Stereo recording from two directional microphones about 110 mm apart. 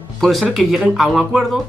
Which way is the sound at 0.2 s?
Centre (ahead or behind).